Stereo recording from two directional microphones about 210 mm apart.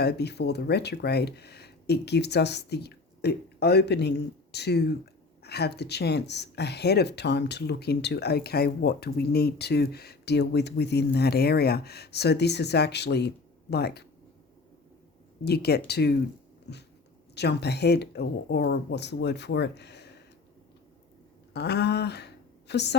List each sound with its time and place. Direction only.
0.0 s speech: 50° left (ahead or behind)
15.4 s speech: 50° left (ahead or behind)
17.3 s speech: 50° left (ahead or behind)
21.5 s a woman's voice: 50° left (ahead or behind)